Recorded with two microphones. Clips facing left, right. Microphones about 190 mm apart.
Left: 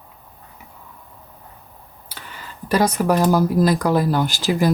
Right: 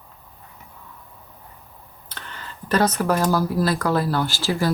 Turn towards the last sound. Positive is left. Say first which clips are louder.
# left 4 dB
turn(degrees=15)  # may be behind; listen again after turning